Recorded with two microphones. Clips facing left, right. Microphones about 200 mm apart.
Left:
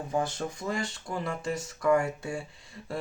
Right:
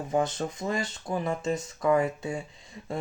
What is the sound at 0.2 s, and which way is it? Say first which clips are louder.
Speech: right 3 dB; 20° right (ahead or behind).